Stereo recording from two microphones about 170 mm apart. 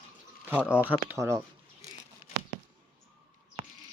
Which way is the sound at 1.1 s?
15° right (ahead or behind).